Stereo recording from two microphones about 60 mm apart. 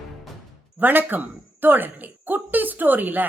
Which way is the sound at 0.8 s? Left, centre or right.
Right.